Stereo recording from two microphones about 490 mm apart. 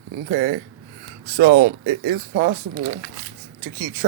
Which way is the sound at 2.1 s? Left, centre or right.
Centre.